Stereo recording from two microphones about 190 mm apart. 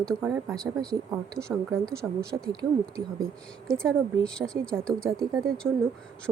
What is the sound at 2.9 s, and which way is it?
Speech, 5° left (ahead or behind).